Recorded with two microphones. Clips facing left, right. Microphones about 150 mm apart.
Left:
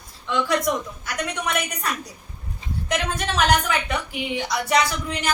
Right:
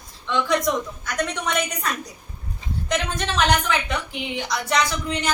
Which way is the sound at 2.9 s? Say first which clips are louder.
Even; 5° left (ahead or behind).